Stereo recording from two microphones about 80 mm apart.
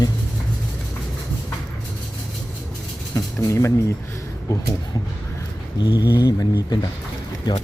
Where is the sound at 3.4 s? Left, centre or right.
Left.